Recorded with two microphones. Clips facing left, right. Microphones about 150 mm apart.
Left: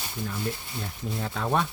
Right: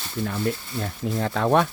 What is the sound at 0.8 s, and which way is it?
Speech, 75° right (ahead or behind).